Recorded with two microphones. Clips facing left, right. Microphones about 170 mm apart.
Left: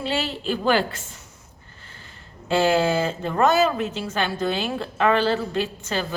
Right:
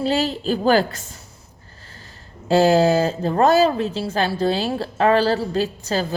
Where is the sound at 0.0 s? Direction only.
40° right (ahead or behind).